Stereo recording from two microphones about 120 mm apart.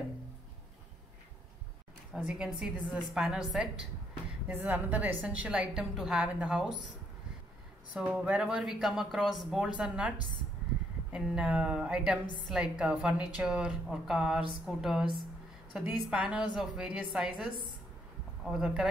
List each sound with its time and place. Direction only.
2.2 s a woman's voice: 5° right (ahead or behind)
4.5 s a woman's voice: 15° right (ahead or behind)
7.9 s a woman's voice: 10° right (ahead or behind)